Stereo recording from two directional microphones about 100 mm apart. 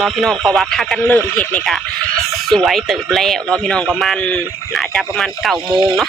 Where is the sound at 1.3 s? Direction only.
10° left (ahead or behind).